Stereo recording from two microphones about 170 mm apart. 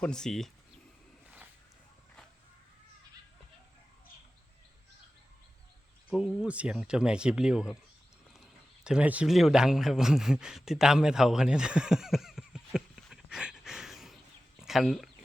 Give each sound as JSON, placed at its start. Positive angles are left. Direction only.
{"t": 0.0, "sound": "speech", "side_deg": 5}
{"t": 6.1, "sound": "speech", "side_deg": -5}